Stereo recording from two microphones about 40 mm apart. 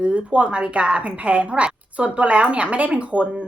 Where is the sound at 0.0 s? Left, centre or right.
Right.